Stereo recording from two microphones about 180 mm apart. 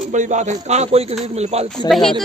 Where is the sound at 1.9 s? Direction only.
Centre (ahead or behind).